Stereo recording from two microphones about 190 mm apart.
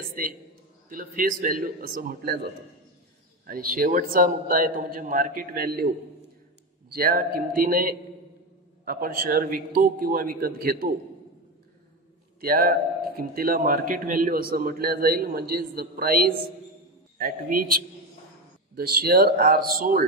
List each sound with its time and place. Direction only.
0.1 s a man's voice: 50° right (ahead or behind)
6.9 s a man's voice: 50° right (ahead or behind)
12.4 s a man's voice: 50° right (ahead or behind)